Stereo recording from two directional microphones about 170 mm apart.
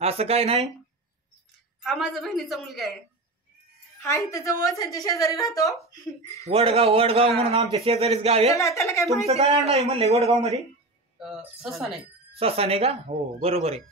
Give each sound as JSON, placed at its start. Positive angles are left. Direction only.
{"t": 0.0, "sound": "a man's voice", "side_deg": -35}
{"t": 1.8, "sound": "a woman's voice", "side_deg": 0}
{"t": 4.0, "sound": "a woman's voice", "side_deg": 20}
{"t": 6.4, "sound": "a man's voice", "side_deg": -35}
{"t": 8.5, "sound": "speech", "side_deg": 20}
{"t": 9.3, "sound": "a man's voice", "side_deg": -35}
{"t": 11.1, "sound": "a woman's voice", "side_deg": 0}
{"t": 12.4, "sound": "a man's voice", "side_deg": -35}